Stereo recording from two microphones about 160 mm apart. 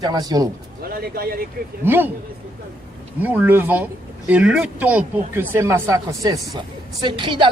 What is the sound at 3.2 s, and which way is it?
A woman's voice, 10° right (ahead or behind).